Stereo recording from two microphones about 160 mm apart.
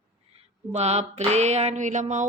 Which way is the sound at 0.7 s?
45° right (ahead or behind).